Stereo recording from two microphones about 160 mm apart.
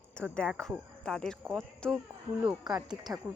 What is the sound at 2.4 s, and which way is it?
Speech, 25° right (ahead or behind).